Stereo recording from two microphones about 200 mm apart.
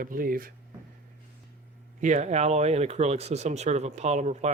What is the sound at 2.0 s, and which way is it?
Speech, 35° right (ahead or behind).